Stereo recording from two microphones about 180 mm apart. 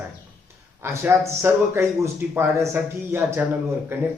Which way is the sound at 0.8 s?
15° right (ahead or behind).